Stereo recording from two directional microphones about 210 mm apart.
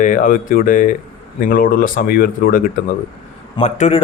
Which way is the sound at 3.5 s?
30° left (ahead or behind).